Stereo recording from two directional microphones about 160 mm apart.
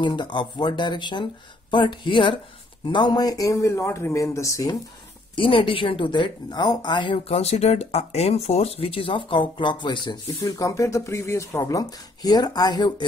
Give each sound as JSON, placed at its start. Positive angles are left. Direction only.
{"t": 0.0, "sound": "speech", "side_deg": 30}
{"t": 5.3, "sound": "speech", "side_deg": 30}